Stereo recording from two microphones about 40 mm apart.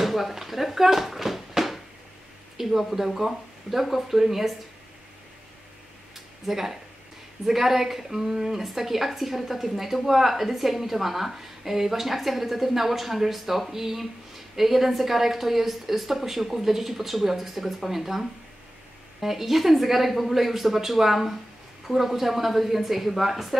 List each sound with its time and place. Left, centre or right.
0.0 s a woman's voice: centre
6.4 s a woman's voice: centre
19.2 s a woman's voice: centre